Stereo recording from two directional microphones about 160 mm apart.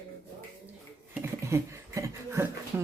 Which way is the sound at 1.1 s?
15° right (ahead or behind).